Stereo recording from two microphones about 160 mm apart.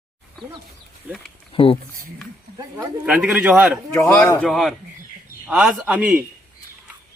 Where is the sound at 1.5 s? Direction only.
35° left (ahead or behind).